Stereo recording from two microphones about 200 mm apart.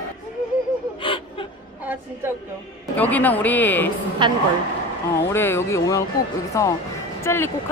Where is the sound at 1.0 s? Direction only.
25° left (ahead or behind).